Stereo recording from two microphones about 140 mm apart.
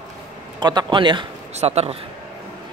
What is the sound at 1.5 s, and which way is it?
Speech, 50° right (ahead or behind).